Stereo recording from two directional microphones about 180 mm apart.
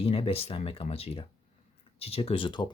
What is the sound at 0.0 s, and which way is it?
Speech, 35° left (ahead or behind).